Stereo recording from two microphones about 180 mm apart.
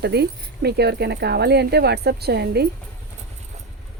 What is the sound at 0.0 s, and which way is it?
Speech, 65° right (ahead or behind).